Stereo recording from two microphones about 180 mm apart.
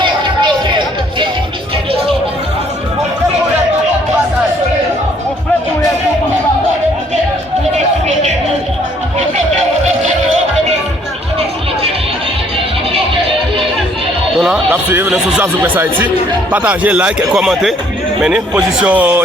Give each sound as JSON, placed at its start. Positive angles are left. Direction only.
{"t": 0.0, "sound": "music", "side_deg": -25}
{"t": 14.3, "sound": "a sound", "side_deg": -5}
{"t": 16.5, "sound": "a man's voice", "side_deg": -10}